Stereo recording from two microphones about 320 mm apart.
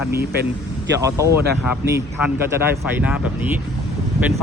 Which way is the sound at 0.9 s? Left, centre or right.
Centre.